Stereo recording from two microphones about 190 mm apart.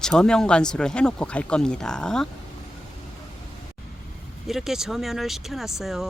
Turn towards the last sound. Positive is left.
turn(degrees=0)  # may be behind; listen again after turning